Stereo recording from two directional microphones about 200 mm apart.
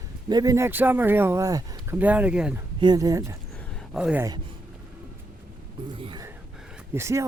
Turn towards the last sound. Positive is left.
turn(degrees=-15)  # may be behind; listen again after turning